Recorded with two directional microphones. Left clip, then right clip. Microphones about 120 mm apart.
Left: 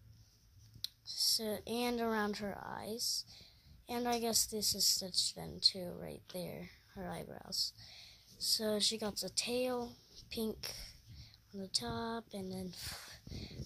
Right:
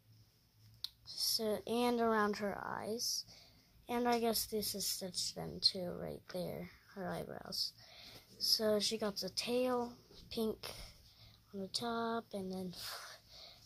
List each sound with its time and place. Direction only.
0.7 s a woman's voice: centre (ahead or behind)